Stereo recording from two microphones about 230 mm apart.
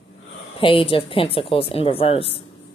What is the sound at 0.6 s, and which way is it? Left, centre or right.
Speech, left.